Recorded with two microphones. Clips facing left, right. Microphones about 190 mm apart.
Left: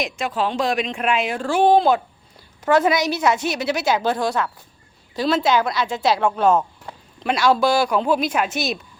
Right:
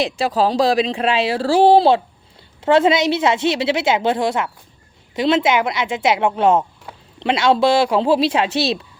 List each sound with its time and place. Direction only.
0.0 s a woman's voice: 35° right (ahead or behind)